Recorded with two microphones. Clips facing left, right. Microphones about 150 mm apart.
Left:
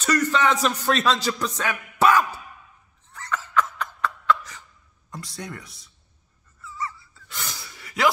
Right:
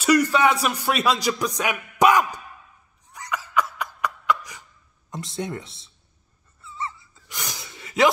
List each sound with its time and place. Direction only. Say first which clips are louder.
0.0 s speech: right 3 dB; 10° right (ahead or behind)
3.1 s a sound: even; 15° right (ahead or behind)
5.1 s speech: right 6 dB; 20° right (ahead or behind)
6.6 s gasp: even; 25° right (ahead or behind)